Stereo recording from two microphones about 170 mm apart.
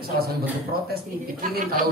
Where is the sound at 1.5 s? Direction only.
60° right (ahead or behind).